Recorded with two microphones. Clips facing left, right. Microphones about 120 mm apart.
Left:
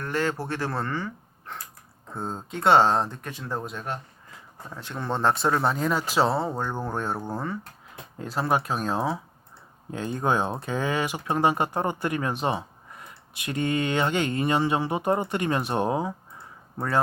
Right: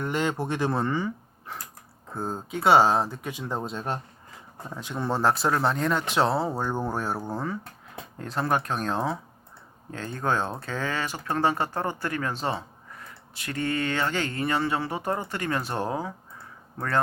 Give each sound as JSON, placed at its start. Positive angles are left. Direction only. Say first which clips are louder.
{"t": 0.0, "sound": "speech", "louder": "even", "side_deg": -20}
{"t": 3.7, "sound": "speech", "louder": "right 2 dB", "side_deg": -30}
{"t": 4.7, "sound": "speech", "louder": "right 1 dB", "side_deg": -15}
{"t": 9.9, "sound": "speech", "louder": "left 2 dB", "side_deg": 15}